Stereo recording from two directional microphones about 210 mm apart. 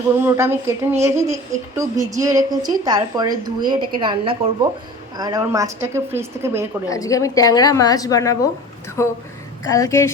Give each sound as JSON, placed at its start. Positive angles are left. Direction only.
{"t": 0.3, "sound": "speech", "side_deg": -10}
{"t": 6.8, "sound": "a woman's voice", "side_deg": 15}